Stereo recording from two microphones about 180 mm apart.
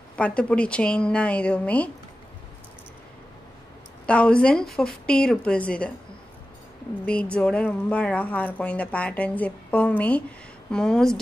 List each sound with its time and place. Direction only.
0.1 s speech: 5° left (ahead or behind)
4.0 s a woman's voice: 5° left (ahead or behind)
7.1 s a woman's voice: 5° left (ahead or behind)